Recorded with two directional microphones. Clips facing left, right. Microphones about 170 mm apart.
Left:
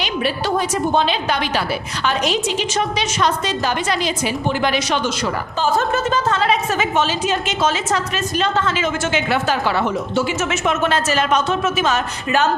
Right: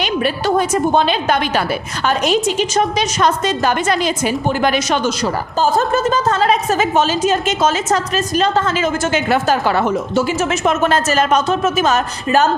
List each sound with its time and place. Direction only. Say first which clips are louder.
0.0 s a woman's voice: right 3 dB; 50° right (ahead or behind)